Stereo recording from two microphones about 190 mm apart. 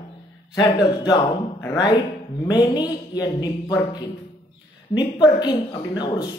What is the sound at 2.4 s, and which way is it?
Speech, 20° left (ahead or behind).